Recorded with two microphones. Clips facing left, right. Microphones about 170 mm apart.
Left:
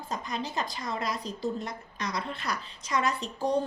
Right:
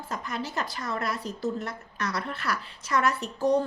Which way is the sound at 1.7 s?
15° left (ahead or behind).